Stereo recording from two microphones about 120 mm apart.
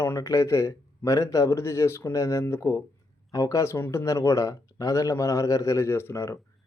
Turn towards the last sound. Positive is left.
turn(degrees=20)  # may be behind; listen again after turning